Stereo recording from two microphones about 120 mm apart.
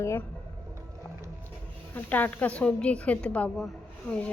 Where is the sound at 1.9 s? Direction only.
15° left (ahead or behind).